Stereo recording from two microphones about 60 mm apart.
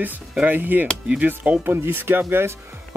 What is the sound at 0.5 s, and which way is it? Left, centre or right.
Speech, right.